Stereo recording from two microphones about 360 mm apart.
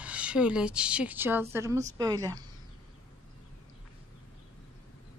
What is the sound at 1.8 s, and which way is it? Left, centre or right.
Speech, centre.